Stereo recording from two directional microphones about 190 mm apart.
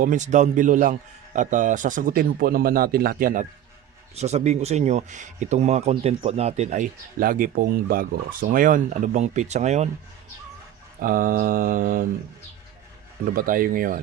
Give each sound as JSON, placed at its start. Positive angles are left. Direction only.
{"t": 0.0, "sound": "a man's voice", "side_deg": -40}
{"t": 4.1, "sound": "speech", "side_deg": -35}
{"t": 11.0, "sound": "a man's voice", "side_deg": -50}
{"t": 13.3, "sound": "a man's voice", "side_deg": -45}